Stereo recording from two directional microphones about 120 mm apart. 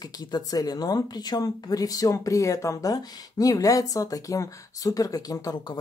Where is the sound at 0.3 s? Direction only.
30° left (ahead or behind).